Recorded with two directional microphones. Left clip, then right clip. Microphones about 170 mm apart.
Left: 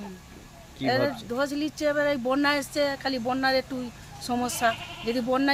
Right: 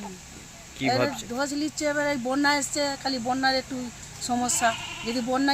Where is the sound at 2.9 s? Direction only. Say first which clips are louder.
Even; 30° left (ahead or behind).